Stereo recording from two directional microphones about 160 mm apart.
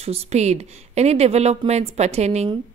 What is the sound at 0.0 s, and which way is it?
A woman's voice, 40° right (ahead or behind).